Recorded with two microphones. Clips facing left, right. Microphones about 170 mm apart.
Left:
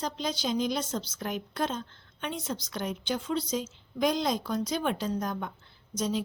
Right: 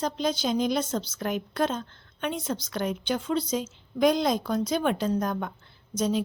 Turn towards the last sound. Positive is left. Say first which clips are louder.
# right 4 dB
turn(degrees=-50)  # may be behind; listen again after turning